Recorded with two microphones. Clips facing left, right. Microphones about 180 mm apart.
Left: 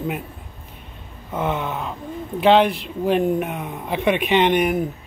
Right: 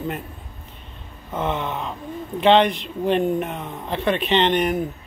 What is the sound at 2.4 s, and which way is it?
Speech, 5° left (ahead or behind).